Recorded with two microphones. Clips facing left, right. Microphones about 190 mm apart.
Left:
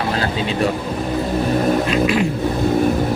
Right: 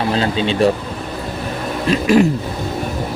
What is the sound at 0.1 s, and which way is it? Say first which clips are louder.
Speech: right 3 dB; 25° right (ahead or behind).